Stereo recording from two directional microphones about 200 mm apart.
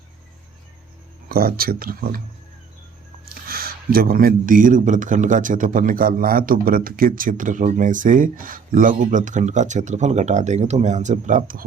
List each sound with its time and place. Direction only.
1.3 s speech: 50° right (ahead or behind)
3.2 s speech: 50° right (ahead or behind)